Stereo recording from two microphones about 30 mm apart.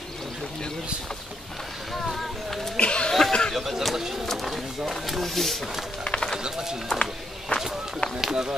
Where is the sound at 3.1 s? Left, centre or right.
Centre.